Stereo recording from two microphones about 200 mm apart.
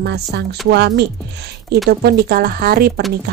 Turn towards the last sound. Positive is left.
turn(degrees=-50)  # may be behind; listen again after turning